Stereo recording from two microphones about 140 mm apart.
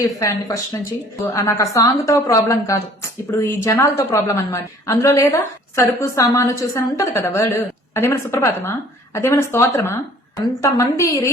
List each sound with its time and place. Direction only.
0.0 s a woman's voice: 25° left (ahead or behind)